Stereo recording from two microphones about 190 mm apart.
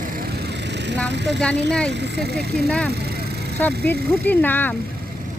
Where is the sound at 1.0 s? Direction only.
65° right (ahead or behind).